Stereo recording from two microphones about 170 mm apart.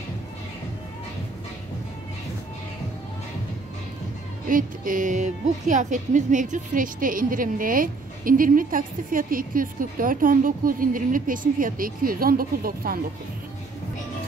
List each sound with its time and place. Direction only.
4.5 s a woman's voice: 55° right (ahead or behind)